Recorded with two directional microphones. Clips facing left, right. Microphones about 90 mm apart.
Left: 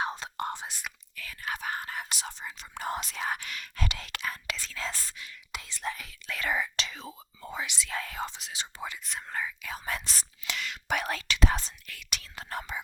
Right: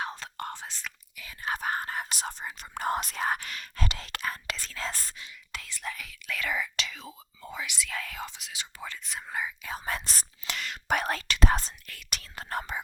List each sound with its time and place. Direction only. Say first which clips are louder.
0.0 s whispering: left 3 dB; 20° left (ahead or behind)
1.1 s whispering: right 3 dB; 20° right (ahead or behind)
1.5 s whispering: right 4 dB; 40° right (ahead or behind)
2.1 s speech: right 3 dB; 45° right (ahead or behind)
5.5 s speech: left 3 dB; 20° left (ahead or behind)
9.0 s speech: right 1 dB; centre (ahead or behind)
9.6 s whispering: right 1 dB; 35° right (ahead or behind)